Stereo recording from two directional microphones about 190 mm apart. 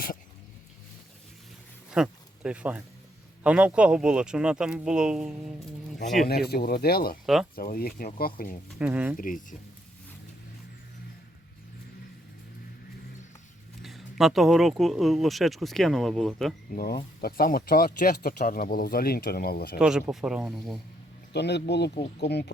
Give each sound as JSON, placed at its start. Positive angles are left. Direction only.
{"t": 1.9, "sound": "speech", "side_deg": -5}
{"t": 6.2, "sound": "speech", "side_deg": 55}
{"t": 8.8, "sound": "speech", "side_deg": -10}
{"t": 9.1, "sound": "speech", "side_deg": 45}
{"t": 13.8, "sound": "speech", "side_deg": 0}
{"t": 16.7, "sound": "speech", "side_deg": 50}
{"t": 19.8, "sound": "speech", "side_deg": -5}
{"t": 21.3, "sound": "speech", "side_deg": 60}